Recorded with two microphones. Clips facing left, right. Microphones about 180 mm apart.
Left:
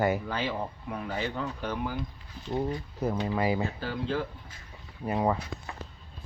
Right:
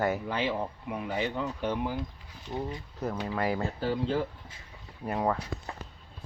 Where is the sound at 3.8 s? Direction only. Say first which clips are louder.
Right 3 dB; 30° right (ahead or behind).